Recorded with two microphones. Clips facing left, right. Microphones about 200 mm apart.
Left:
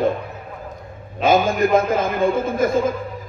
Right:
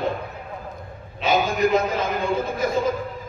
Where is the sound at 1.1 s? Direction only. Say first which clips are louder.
Left 5 dB; 50° left (ahead or behind).